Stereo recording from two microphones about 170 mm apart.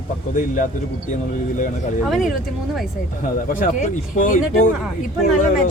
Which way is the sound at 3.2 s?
55° left (ahead or behind).